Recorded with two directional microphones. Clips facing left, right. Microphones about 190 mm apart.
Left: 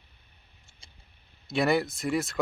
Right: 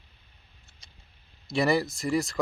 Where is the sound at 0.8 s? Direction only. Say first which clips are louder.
Left 2 dB; 30° left (ahead or behind).